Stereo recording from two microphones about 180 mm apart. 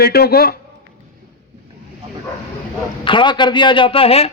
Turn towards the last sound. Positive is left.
turn(degrees=35)  # may be behind; listen again after turning